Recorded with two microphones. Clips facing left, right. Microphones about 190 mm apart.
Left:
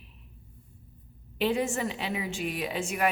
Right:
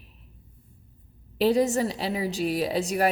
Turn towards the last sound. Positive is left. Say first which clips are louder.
# right 5 dB
turn(degrees=-35)  # may be behind; listen again after turning